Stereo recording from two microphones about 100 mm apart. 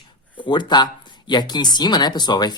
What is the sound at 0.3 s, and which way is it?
Speech, 50° left (ahead or behind).